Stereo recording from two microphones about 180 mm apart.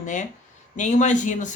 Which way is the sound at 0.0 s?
40° left (ahead or behind).